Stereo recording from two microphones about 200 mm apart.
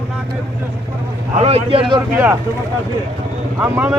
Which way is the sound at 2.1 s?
10° right (ahead or behind).